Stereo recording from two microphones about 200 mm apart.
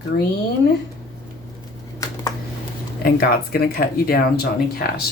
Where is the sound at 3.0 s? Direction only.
50° left (ahead or behind).